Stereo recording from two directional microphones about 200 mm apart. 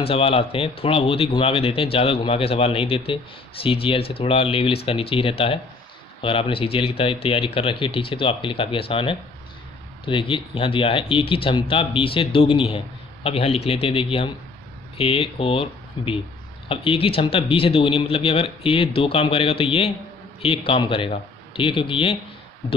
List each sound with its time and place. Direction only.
0.0 s speech: 30° left (ahead or behind)